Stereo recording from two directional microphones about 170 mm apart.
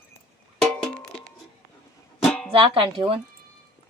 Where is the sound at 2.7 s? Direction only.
30° right (ahead or behind).